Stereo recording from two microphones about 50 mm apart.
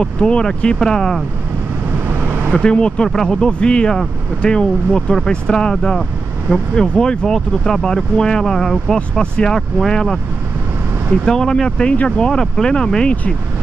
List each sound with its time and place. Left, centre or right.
0.0 s speech: centre
2.0 s vehicle: right
2.5 s speech: centre
9.2 s speech: centre
11.2 s speech: centre